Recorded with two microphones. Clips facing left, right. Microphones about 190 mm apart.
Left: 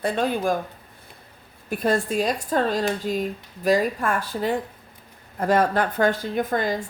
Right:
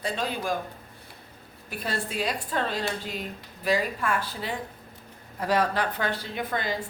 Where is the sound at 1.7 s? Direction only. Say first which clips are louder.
Left 10 dB; 50° left (ahead or behind).